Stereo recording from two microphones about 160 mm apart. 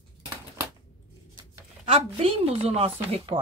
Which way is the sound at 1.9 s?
35° right (ahead or behind).